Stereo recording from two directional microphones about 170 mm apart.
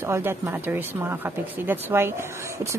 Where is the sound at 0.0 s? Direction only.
15° right (ahead or behind).